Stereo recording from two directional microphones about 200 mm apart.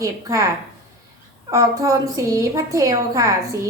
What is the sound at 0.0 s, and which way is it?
Speech, 15° right (ahead or behind).